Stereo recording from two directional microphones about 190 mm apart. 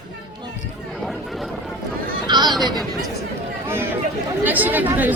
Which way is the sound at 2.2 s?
20° right (ahead or behind).